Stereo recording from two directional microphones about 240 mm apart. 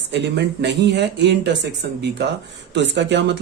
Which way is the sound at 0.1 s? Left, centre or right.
Right.